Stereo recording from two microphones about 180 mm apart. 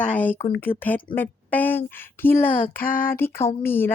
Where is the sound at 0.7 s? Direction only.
30° left (ahead or behind).